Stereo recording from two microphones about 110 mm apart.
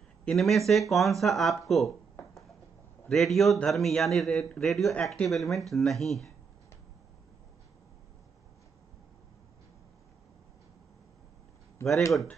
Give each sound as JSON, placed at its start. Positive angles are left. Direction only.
{"t": 0.2, "sound": "speech", "side_deg": 5}
{"t": 3.1, "sound": "speech", "side_deg": 5}
{"t": 11.8, "sound": "speech", "side_deg": 25}